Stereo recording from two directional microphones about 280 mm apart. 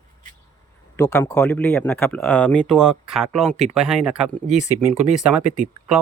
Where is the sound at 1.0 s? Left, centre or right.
Centre.